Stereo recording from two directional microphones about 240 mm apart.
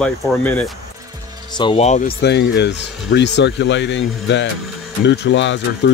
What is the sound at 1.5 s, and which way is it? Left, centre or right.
Speech, left.